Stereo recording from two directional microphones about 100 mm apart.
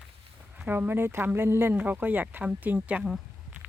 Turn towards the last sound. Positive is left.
turn(degrees=-10)  # may be behind; listen again after turning